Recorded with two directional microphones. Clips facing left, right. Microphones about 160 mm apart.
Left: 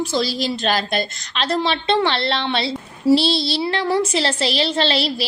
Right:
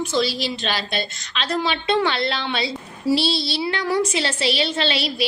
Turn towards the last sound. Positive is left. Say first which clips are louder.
# left 3 dB
turn(degrees=35)  # may be behind; listen again after turning